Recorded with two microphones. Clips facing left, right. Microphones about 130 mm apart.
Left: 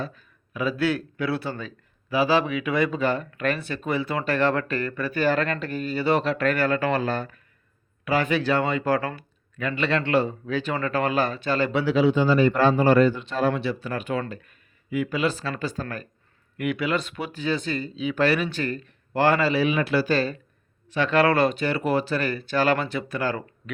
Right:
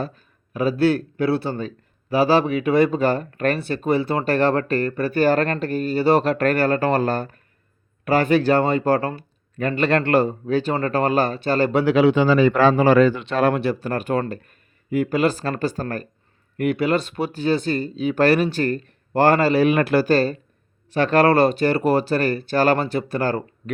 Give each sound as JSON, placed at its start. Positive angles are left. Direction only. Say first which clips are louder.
{"t": 0.0, "sound": "speech", "louder": "right 4 dB", "side_deg": -40}
{"t": 9.6, "sound": "speech", "louder": "right 5 dB", "side_deg": -45}
{"t": 11.9, "sound": "a man's voice", "louder": "right 3 dB", "side_deg": -75}
{"t": 13.5, "sound": "speech", "louder": "right 5 dB", "side_deg": -50}